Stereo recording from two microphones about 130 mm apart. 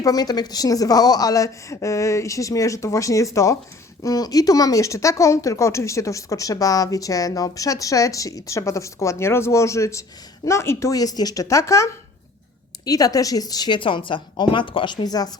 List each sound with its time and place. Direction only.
0.0 s a woman's voice: 30° left (ahead or behind)